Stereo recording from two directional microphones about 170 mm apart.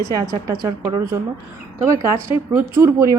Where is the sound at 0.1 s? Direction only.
20° right (ahead or behind).